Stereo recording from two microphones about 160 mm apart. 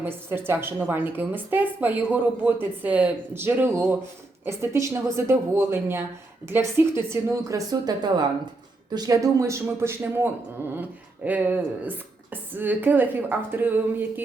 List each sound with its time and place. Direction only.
0.0 s a man's voice: 15° right (ahead or behind)